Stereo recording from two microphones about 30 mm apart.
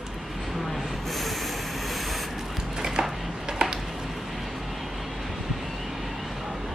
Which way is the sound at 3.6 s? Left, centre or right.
Right.